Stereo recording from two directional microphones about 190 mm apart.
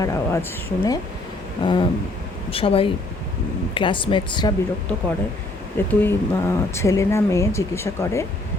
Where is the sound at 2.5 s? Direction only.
30° left (ahead or behind).